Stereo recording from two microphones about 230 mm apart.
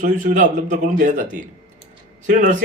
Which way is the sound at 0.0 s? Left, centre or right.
Right.